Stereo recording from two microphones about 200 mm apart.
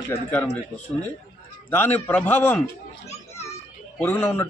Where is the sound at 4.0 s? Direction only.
10° left (ahead or behind).